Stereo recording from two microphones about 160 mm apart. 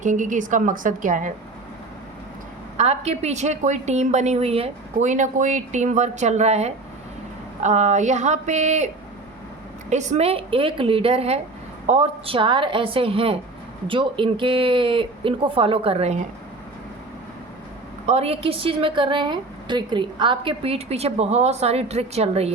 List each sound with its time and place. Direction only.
0.0 s a woman's voice: 50° right (ahead or behind)
2.7 s a woman's voice: 40° right (ahead or behind)
9.9 s a woman's voice: 45° right (ahead or behind)
18.0 s a woman's voice: 40° right (ahead or behind)